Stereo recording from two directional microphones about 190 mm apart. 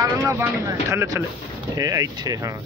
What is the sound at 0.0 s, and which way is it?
Speech, 15° right (ahead or behind).